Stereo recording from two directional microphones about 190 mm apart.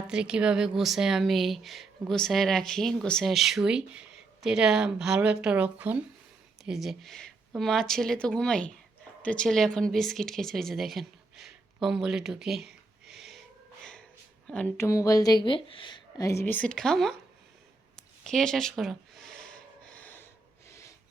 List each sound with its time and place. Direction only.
0.1 s speech: 5° right (ahead or behind)
14.4 s speech: 5° left (ahead or behind)
16.4 s speech: 10° left (ahead or behind)
18.2 s a sound: centre (ahead or behind)
19.9 s snort: 10° left (ahead or behind)